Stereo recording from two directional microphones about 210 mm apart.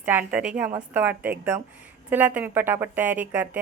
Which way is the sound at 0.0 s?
10° right (ahead or behind).